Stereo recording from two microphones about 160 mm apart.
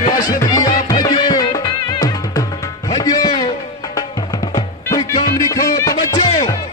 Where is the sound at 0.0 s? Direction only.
25° left (ahead or behind).